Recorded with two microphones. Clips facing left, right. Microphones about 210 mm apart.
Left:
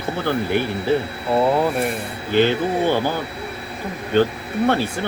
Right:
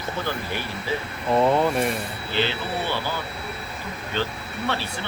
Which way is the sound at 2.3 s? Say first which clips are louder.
Left 9 dB; 50° left (ahead or behind).